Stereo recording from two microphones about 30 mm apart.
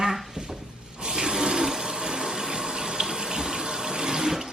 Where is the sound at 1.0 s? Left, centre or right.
Right.